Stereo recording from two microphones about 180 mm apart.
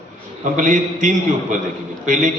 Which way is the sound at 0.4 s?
45° right (ahead or behind).